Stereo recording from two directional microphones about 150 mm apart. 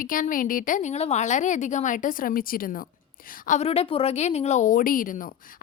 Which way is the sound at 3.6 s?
40° left (ahead or behind).